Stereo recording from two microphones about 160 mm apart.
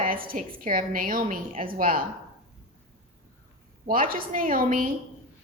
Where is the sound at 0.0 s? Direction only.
65° right (ahead or behind).